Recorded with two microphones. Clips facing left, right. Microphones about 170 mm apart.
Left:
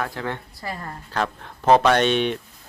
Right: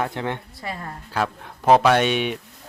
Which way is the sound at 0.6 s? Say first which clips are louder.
Even; 5° right (ahead or behind).